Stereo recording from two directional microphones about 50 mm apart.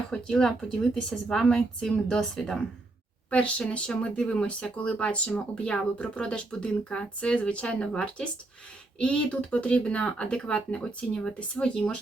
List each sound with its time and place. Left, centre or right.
0.1 s speech: centre
3.2 s speech: left